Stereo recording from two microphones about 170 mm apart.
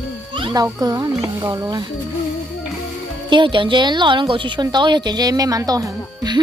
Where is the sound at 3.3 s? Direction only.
30° right (ahead or behind).